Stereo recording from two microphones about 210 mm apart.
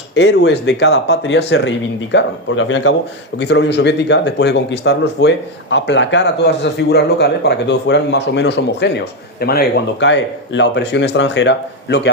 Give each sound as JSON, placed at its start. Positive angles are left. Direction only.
{"t": 0.1, "sound": "speech", "side_deg": 55}